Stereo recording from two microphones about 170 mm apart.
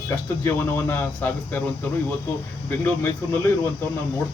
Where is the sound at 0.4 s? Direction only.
15° left (ahead or behind).